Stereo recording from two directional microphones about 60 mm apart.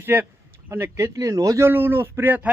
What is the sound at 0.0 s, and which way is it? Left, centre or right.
Speech, right.